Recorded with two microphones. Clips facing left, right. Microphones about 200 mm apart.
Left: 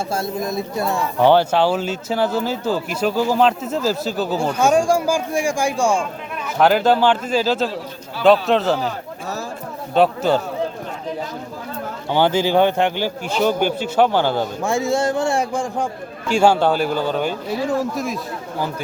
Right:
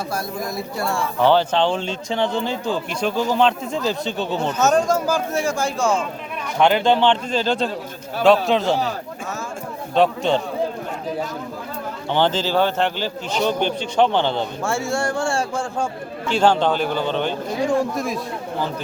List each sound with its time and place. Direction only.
0.1 s a man's voice: 25° left (ahead or behind); by 8.8 s centre (ahead or behind)
9.9 s a man's voice: 5° left (ahead or behind)
12.1 s speech: 10° left (ahead or behind)
14.6 s speech: 15° left (ahead or behind); by 18.2 s centre (ahead or behind)